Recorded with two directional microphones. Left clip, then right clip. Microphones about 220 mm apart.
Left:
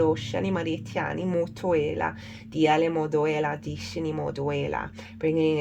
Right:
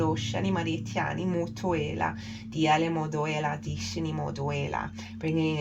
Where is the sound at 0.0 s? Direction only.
45° left (ahead or behind).